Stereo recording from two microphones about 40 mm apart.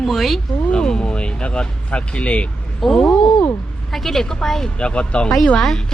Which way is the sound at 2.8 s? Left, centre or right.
Centre.